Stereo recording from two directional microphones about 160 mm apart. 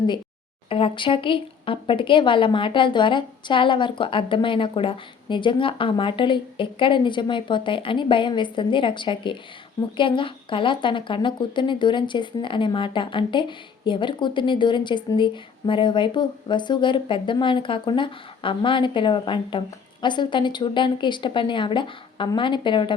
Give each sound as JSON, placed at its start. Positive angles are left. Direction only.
{"t": 0.7, "sound": "a woman's voice", "side_deg": 35}